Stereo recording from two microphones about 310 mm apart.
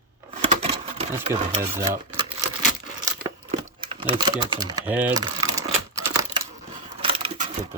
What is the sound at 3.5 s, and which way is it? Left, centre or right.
Mechanisms, centre.